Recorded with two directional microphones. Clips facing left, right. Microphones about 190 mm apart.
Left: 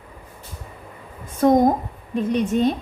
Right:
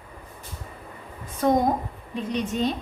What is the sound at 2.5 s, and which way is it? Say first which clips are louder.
Speech: left 6 dB; 50° left (ahead or behind).